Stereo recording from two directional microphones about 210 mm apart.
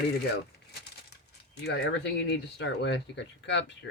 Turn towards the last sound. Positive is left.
turn(degrees=55)  # may be behind; listen again after turning